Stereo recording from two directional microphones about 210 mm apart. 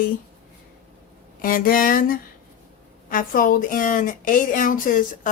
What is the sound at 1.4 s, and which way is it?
A woman's voice, 40° left (ahead or behind).